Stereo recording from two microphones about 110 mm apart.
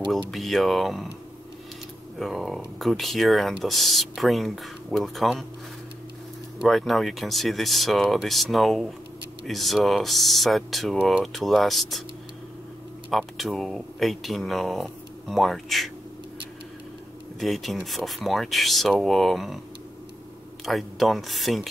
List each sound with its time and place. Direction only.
0.1 s speech: centre (ahead or behind)
2.1 s speech: centre (ahead or behind)
6.6 s speech: centre (ahead or behind)
13.1 s speech: centre (ahead or behind)
17.4 s speech: centre (ahead or behind)
20.6 s speech: centre (ahead or behind)